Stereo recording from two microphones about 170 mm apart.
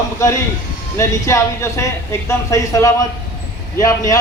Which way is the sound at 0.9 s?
20° left (ahead or behind).